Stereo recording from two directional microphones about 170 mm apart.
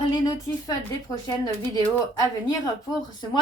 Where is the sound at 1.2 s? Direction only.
20° left (ahead or behind).